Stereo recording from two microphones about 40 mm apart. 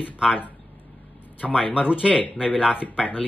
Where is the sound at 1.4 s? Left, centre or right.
Centre.